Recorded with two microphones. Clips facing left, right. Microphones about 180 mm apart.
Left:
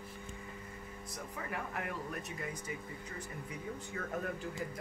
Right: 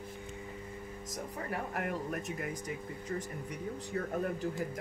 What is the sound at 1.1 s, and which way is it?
Speech, 40° right (ahead or behind).